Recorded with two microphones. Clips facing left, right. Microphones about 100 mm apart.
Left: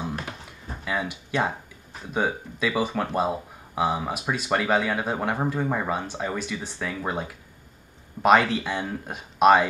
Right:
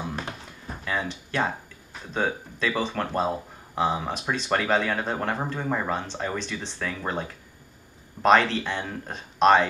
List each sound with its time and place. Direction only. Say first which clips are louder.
0.8 s speech: left 1 dB; 10° left (ahead or behind)